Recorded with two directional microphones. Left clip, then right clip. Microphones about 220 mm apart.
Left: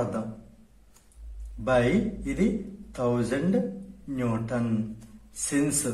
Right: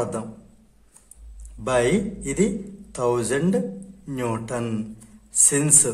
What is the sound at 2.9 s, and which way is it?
A man's voice, 40° right (ahead or behind).